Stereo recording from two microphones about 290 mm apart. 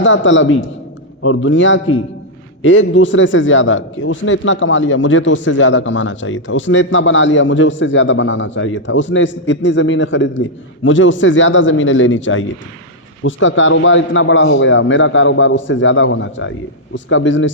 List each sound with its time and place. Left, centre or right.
0.0 s a man's voice: left